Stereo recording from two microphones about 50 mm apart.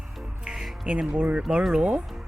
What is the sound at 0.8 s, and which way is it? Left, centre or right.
Speech, right.